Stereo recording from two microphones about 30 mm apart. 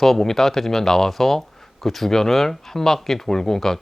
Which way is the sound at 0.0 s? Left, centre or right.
Centre.